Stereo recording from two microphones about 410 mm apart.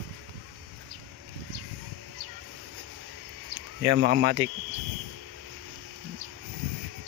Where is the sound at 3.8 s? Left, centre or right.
Right.